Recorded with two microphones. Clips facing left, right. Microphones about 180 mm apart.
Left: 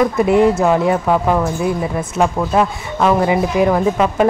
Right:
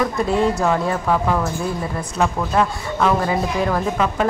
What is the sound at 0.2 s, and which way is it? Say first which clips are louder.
Speech: left 7 dB; 20° left (ahead or behind).